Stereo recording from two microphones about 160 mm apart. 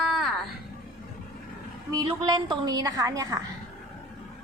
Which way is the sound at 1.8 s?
25° right (ahead or behind).